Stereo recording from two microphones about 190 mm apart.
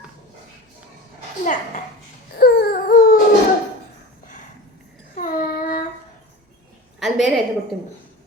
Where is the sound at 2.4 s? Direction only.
55° left (ahead or behind).